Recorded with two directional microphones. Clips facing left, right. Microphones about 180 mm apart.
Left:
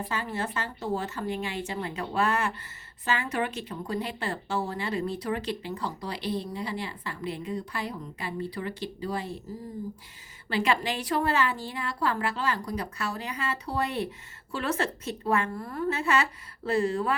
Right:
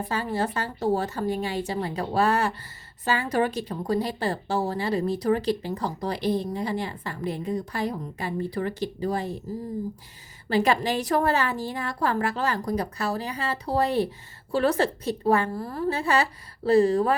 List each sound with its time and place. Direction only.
0.1 s a woman's voice: 35° right (ahead or behind)
10.5 s a woman's voice: 40° right (ahead or behind)